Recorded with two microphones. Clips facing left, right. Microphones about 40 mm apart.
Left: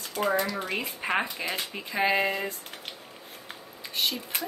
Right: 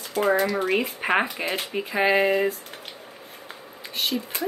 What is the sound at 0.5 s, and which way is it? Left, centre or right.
A woman's voice, right.